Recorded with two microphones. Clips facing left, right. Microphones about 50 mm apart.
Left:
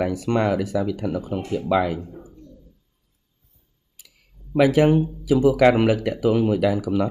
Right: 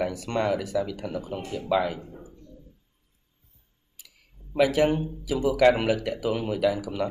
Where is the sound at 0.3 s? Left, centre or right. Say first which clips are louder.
Left 5 dB; left.